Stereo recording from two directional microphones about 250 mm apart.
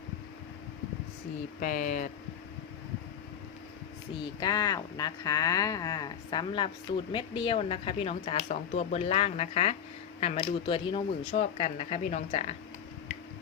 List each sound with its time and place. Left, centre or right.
1.6 s speech: left
4.2 s speech: centre